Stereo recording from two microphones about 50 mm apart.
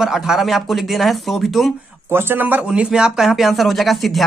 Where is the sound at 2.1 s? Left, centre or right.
Right.